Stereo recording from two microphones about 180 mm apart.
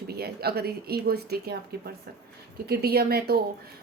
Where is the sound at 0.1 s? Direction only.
60° right (ahead or behind).